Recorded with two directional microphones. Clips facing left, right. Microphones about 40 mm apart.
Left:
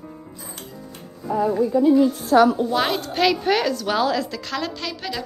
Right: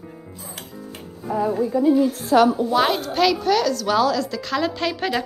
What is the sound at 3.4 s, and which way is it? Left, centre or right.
Speech, left.